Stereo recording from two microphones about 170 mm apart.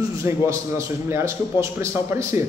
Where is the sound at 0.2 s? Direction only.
15° right (ahead or behind).